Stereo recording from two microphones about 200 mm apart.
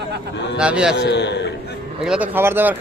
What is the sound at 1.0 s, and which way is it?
Speech, 60° left (ahead or behind).